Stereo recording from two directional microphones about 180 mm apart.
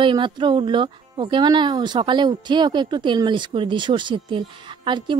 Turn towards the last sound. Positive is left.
turn(degrees=-25)  # may be behind; listen again after turning